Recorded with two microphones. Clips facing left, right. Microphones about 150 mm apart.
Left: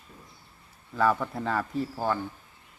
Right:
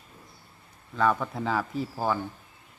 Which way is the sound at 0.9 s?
5° left (ahead or behind).